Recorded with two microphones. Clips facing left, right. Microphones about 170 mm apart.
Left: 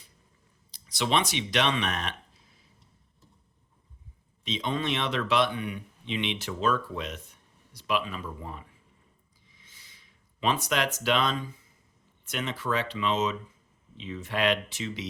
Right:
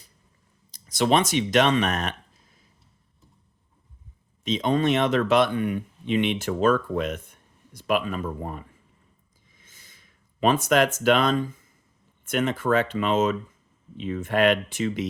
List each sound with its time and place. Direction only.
0.7 s speech: 45° right (ahead or behind)
4.4 s speech: 45° right (ahead or behind)
9.5 s a sound: 50° right (ahead or behind)
12.2 s speech: 50° right (ahead or behind)